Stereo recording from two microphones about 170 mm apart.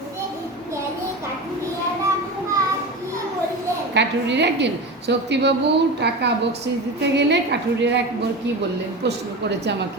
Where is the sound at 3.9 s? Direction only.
90° right.